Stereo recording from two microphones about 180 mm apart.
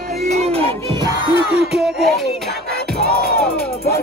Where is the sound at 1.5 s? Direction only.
5° right (ahead or behind).